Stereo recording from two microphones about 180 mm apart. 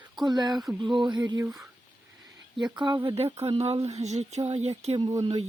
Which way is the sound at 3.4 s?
35° right (ahead or behind).